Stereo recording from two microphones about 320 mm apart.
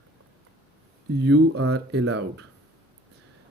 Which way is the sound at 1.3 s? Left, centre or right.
Right.